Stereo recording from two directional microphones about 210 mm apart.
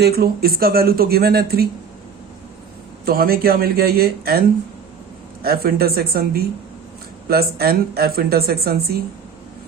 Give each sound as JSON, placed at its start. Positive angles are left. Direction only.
{"t": 0.0, "sound": "speech", "side_deg": -45}
{"t": 3.1, "sound": "speech", "side_deg": -45}